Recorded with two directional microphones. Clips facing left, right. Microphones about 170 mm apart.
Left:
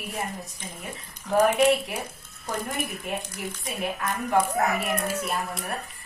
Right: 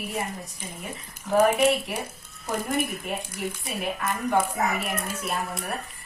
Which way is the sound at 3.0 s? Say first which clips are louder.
Right 1 dB; 5° right (ahead or behind).